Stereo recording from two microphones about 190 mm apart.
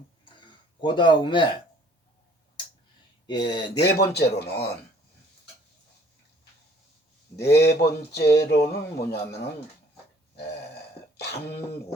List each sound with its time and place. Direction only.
0.8 s speech: 25° left (ahead or behind)
3.2 s speech: 25° left (ahead or behind)
3.8 s speech: 55° left (ahead or behind)
7.3 s speech: 60° left (ahead or behind)
11.2 s speech: 60° left (ahead or behind)